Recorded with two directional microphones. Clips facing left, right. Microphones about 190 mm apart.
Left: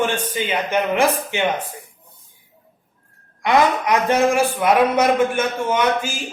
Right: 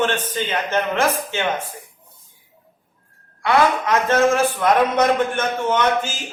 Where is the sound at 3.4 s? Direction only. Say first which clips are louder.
Left 1 dB; 15° left (ahead or behind).